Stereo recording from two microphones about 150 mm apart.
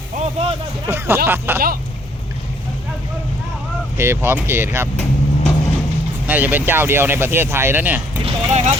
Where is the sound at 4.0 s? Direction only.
15° right (ahead or behind).